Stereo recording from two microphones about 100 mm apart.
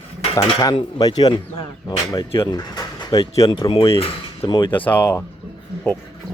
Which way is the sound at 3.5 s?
50° left (ahead or behind).